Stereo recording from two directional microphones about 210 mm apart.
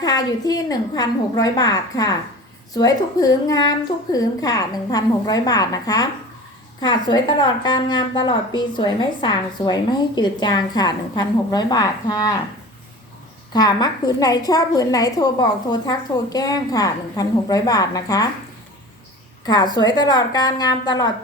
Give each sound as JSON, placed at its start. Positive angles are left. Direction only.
{"t": 0.0, "sound": "a woman's voice", "side_deg": 20}
{"t": 13.5, "sound": "a woman's voice", "side_deg": 20}
{"t": 19.5, "sound": "a woman's voice", "side_deg": 20}